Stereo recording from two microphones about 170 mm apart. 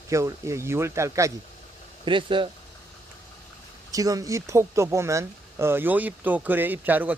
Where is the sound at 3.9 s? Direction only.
20° right (ahead or behind).